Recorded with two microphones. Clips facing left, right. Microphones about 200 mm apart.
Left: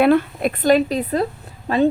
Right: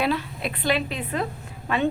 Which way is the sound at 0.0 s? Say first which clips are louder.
Left 10 dB; 55° left (ahead or behind).